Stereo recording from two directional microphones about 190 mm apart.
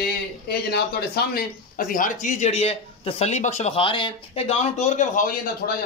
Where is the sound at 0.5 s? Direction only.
55° left (ahead or behind).